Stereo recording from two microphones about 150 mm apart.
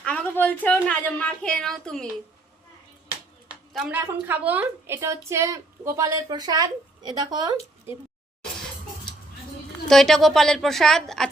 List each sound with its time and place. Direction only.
0.0 s a woman's voice: 10° left (ahead or behind)
3.5 s a sound: 5° right (ahead or behind)
3.9 s a woman's voice: 15° right (ahead or behind)
9.9 s a woman's voice: centre (ahead or behind)